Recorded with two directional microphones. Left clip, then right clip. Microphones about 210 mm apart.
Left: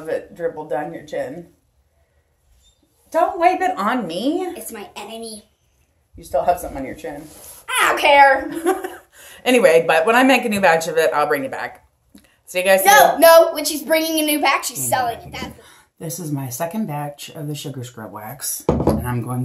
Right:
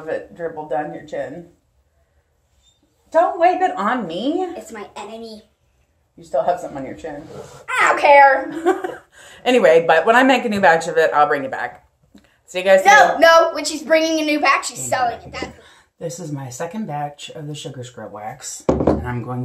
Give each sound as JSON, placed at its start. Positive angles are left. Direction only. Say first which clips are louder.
{"t": 0.0, "sound": "a woman's voice", "louder": "left 2 dB", "side_deg": 5}
{"t": 3.1, "sound": "a woman's voice", "louder": "right 1 dB", "side_deg": 0}
{"t": 4.7, "sound": "speech", "louder": "even", "side_deg": 20}
{"t": 6.1, "sound": "a woman's voice", "louder": "left 1 dB", "side_deg": 5}
{"t": 7.6, "sound": "a child's voice", "louder": "right 2 dB", "side_deg": 20}
{"t": 8.5, "sound": "a woman's voice", "louder": "right 2 dB", "side_deg": 0}
{"t": 12.2, "sound": "a sound", "louder": "left 2 dB", "side_deg": 0}
{"t": 12.8, "sound": "a woman's voice", "louder": "left 1 dB", "side_deg": 20}
{"t": 16.0, "sound": "speech", "louder": "even", "side_deg": 5}